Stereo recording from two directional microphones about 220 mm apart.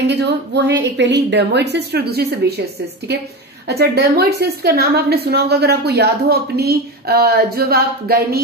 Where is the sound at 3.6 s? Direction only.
45° right (ahead or behind).